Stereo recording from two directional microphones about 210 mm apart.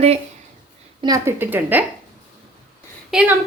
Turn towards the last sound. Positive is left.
turn(degrees=0)  # may be behind; listen again after turning